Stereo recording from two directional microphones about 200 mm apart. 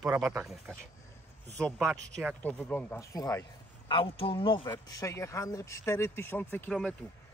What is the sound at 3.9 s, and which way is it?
Speech, 25° left (ahead or behind).